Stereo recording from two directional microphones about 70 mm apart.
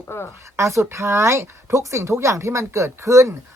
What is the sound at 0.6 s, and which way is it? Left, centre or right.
Speech, right.